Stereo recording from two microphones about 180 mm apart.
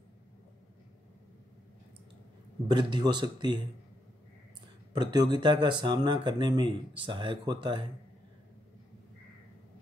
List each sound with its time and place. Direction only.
2.7 s speech: 25° right (ahead or behind)
4.9 s speech: 25° right (ahead or behind)